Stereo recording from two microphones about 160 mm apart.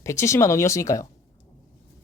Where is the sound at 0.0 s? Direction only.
20° left (ahead or behind).